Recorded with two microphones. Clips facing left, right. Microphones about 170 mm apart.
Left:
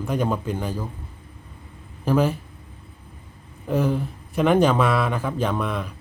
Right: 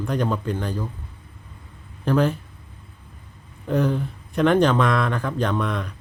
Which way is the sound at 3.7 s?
5° left (ahead or behind).